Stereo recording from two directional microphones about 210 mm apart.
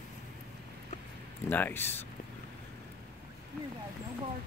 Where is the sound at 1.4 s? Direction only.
10° left (ahead or behind).